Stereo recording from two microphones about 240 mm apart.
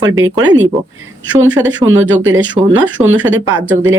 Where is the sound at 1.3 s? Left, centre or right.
Right.